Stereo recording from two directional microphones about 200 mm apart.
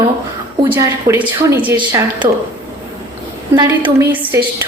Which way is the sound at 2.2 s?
20° right (ahead or behind).